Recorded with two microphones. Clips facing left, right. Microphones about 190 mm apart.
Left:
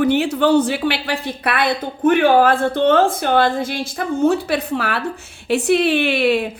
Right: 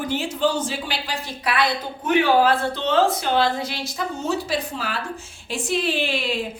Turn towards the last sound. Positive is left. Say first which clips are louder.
# left 8 dB
turn(degrees=65)  # may be behind; listen again after turning